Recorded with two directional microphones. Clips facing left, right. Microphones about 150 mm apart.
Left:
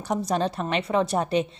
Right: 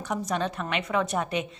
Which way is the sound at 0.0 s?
35° left (ahead or behind).